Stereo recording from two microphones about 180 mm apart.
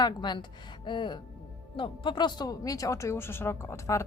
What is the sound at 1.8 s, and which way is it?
A man's voice, 25° left (ahead or behind).